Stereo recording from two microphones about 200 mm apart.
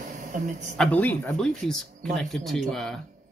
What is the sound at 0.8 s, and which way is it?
Speech, 5° left (ahead or behind).